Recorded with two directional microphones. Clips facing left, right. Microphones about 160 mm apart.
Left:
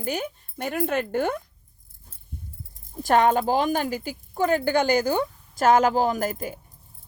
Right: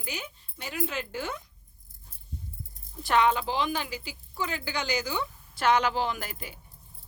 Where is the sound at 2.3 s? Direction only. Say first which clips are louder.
Left 1 dB; 55° left (ahead or behind).